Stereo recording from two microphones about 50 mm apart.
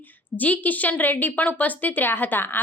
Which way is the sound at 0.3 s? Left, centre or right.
Left.